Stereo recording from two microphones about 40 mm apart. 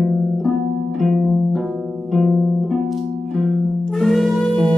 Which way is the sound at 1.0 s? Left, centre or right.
Centre.